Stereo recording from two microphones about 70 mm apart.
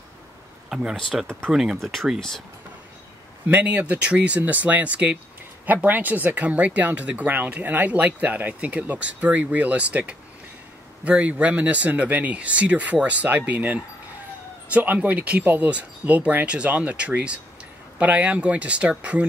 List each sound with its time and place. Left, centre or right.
0.7 s speech: centre
0.9 s speech: centre
1.5 s speech: centre
1.8 s speech: centre
3.4 s speech: right